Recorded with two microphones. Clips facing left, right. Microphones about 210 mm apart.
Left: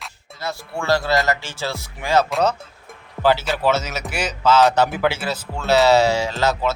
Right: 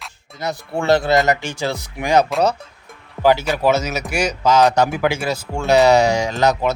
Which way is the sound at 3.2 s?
15° right (ahead or behind).